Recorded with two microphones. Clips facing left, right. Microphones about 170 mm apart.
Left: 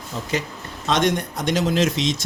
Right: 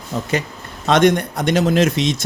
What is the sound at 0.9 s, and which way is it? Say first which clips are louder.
Speech: right 6 dB; 60° right (ahead or behind).